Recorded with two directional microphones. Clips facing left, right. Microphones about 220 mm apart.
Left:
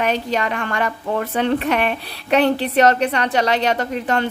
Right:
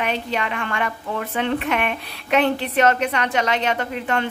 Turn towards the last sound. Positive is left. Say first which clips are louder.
# left 3 dB
turn(degrees=40)  # may be behind; listen again after turning